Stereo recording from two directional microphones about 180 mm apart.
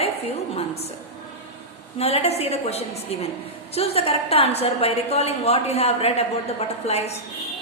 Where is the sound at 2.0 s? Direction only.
35° left (ahead or behind).